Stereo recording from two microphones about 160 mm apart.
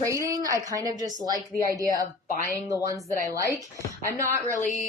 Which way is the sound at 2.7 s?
20° right (ahead or behind).